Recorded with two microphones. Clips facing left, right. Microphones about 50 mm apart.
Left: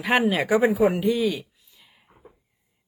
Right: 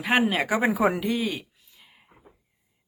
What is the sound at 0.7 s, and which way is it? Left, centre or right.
Speech, right.